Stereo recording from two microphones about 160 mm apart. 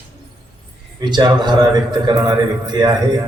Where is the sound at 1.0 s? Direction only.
25° right (ahead or behind).